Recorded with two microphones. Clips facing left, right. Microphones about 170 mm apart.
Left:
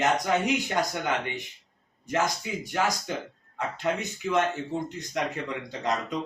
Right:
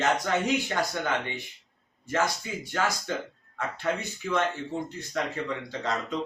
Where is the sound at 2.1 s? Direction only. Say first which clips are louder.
Left 1 dB; 15° left (ahead or behind).